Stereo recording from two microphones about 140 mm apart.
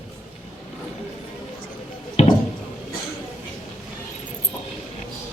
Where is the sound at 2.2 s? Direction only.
50° left (ahead or behind).